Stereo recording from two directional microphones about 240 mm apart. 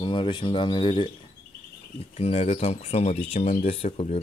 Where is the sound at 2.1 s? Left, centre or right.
Left.